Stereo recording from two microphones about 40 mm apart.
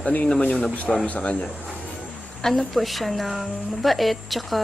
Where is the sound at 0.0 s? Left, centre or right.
Left.